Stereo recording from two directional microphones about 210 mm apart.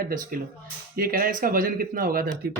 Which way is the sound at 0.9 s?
45° right (ahead or behind).